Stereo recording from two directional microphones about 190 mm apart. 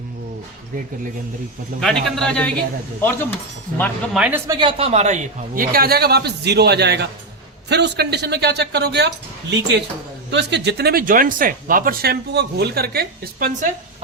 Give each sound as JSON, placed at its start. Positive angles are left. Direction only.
{"t": 1.8, "sound": "a man's voice", "side_deg": 0}
{"t": 3.8, "sound": "a man's voice", "side_deg": 0}
{"t": 4.4, "sound": "speech", "side_deg": -25}